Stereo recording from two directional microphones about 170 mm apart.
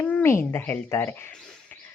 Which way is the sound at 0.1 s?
10° left (ahead or behind).